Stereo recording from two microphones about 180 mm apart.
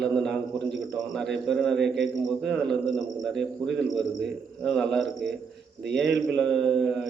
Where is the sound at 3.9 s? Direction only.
Centre (ahead or behind).